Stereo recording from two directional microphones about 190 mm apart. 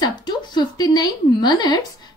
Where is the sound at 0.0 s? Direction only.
20° left (ahead or behind).